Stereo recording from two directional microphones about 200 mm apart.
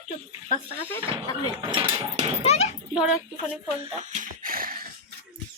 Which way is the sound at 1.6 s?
25° right (ahead or behind).